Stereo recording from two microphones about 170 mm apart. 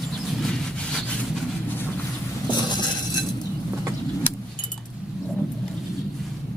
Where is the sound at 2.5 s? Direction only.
25° left (ahead or behind).